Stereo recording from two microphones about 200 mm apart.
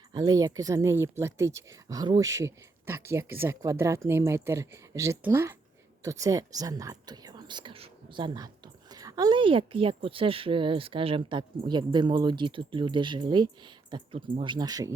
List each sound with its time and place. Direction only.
0.1 s speech: 20° right (ahead or behind)